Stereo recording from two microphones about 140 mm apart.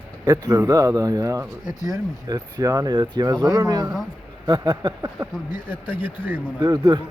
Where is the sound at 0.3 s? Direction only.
20° right (ahead or behind).